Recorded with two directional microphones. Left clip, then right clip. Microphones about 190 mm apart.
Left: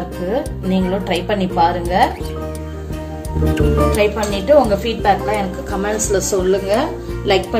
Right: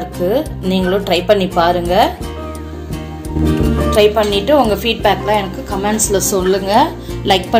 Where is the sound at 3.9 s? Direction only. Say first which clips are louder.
Right 6 dB; 35° right (ahead or behind).